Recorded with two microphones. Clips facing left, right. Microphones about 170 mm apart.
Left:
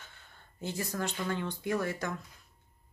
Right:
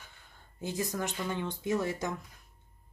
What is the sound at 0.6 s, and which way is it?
Speech, 15° right (ahead or behind).